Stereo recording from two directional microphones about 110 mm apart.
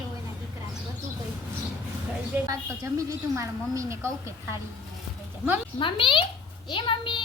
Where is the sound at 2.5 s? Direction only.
30° right (ahead or behind).